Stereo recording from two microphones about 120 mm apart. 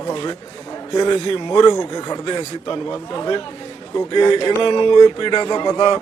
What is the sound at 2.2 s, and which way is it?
Speech, 40° left (ahead or behind).